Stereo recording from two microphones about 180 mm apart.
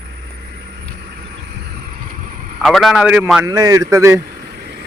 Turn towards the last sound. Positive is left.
turn(degrees=-65)  # may be behind; listen again after turning